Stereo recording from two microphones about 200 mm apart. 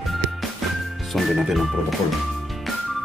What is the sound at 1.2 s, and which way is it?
Speech, centre (ahead or behind).